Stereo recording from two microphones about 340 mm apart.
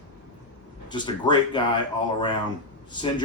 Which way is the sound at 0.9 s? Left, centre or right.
Centre.